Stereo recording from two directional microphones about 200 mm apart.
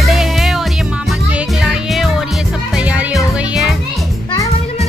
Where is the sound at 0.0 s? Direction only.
Centre (ahead or behind).